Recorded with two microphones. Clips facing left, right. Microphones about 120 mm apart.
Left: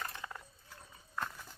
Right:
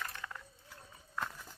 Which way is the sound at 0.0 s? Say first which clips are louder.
Left 1 dB; 20° left (ahead or behind).